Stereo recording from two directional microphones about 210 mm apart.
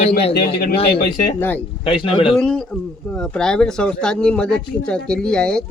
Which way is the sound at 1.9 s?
25° left (ahead or behind).